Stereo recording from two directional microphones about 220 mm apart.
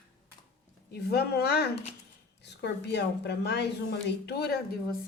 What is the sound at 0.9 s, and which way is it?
Speech, 45° left (ahead or behind).